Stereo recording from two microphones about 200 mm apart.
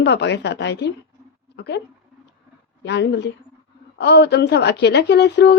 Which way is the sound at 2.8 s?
60° left (ahead or behind).